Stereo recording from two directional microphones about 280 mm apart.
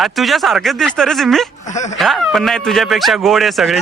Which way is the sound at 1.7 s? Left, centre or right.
Left.